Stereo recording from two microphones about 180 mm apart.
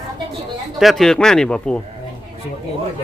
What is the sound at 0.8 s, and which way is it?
Speech, centre (ahead or behind).